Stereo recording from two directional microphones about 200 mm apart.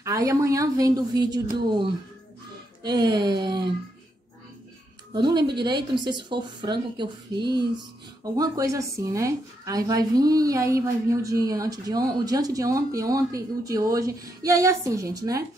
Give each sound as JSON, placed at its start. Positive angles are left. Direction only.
{"t": 0.0, "sound": "speech", "side_deg": -15}
{"t": 5.1, "sound": "speech", "side_deg": -20}